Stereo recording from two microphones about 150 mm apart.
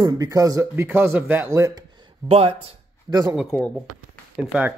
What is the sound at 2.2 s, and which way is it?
Speech, 45° right (ahead or behind).